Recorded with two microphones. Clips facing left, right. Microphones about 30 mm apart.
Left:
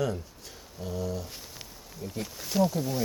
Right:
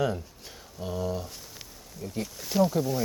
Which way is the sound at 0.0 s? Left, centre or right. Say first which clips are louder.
Right 2 dB; centre.